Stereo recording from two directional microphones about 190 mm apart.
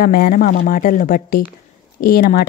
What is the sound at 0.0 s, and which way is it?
A woman's voice, 50° left (ahead or behind).